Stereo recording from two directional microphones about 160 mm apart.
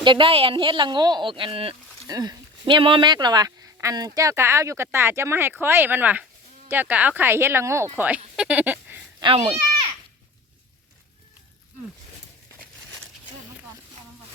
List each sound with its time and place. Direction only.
0.0 s a woman's voice: 30° right (ahead or behind)
2.0 s speech: 25° right (ahead or behind)
9.2 s a woman's voice: 40° right (ahead or behind)